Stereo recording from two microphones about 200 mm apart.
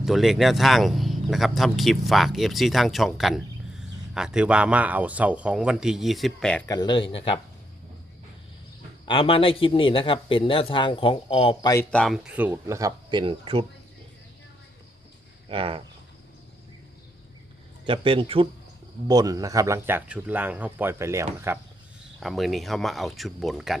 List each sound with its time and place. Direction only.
0.0 s speech: centre (ahead or behind)
6.7 s a man's voice: 20° left (ahead or behind)
9.0 s a man's voice: 25° left (ahead or behind)
11.7 s speech: 10° left (ahead or behind); by 13.7 s 25° right (ahead or behind)
15.4 s speech: 25° right (ahead or behind)
17.8 s speech: 25° right (ahead or behind)
22.2 s speech: centre (ahead or behind)